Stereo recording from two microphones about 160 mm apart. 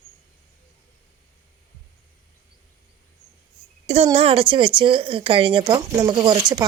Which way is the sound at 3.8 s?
40° right (ahead or behind).